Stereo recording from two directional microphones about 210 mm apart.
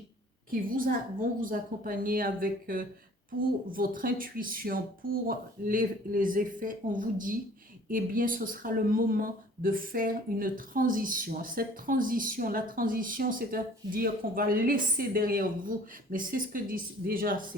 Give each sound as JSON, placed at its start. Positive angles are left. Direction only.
{"t": 0.5, "sound": "speech", "side_deg": -40}